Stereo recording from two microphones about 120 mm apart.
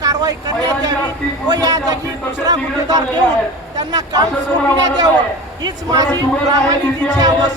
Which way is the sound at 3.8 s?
30° right (ahead or behind).